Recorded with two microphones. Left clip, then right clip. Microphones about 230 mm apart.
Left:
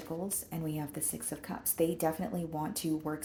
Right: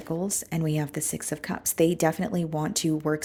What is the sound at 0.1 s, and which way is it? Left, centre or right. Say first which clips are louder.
Speech: right 10 dB; right.